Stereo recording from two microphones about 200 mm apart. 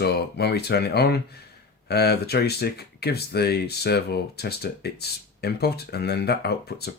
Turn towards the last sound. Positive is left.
turn(degrees=55)  # may be behind; listen again after turning